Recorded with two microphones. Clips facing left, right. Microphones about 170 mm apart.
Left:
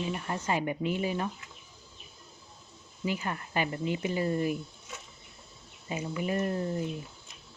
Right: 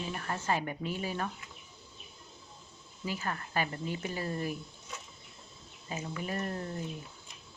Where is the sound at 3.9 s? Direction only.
45° right (ahead or behind).